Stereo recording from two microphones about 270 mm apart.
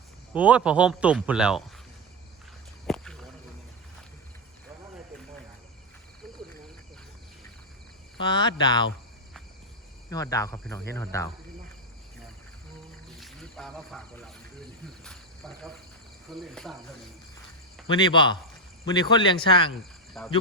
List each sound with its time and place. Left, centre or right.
0.3 s speech: centre
2.8 s walk: centre
8.2 s cricket: centre
10.1 s cricket: centre
13.1 s speech: centre
15.0 s cricket: centre
16.3 s speech: centre
17.9 s cricket: centre
20.1 s speech: centre